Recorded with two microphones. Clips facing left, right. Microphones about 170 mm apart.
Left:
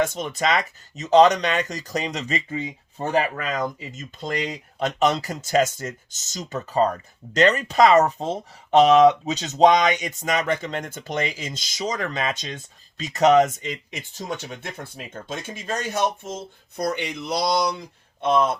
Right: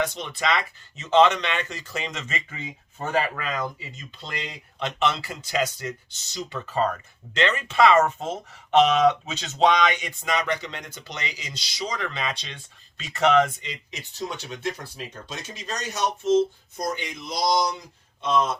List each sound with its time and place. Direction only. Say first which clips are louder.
0.0 s speech: left 4 dB; 45° left (ahead or behind)
16.7 s speech: left 5 dB; 65° left (ahead or behind)